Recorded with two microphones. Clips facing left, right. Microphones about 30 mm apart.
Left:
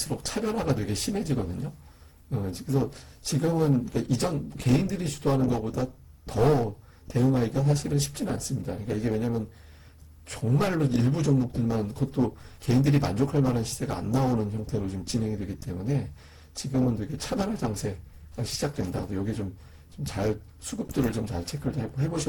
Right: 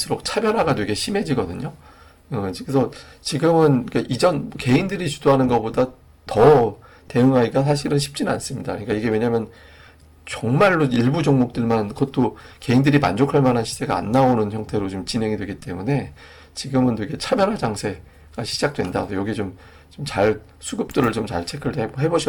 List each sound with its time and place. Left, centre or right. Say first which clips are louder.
0.0 s speech: right 9 dB; right